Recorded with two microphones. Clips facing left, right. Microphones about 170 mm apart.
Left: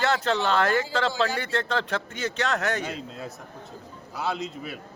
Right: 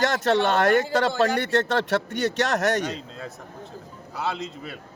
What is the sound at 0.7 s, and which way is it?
Speech, 60° right (ahead or behind).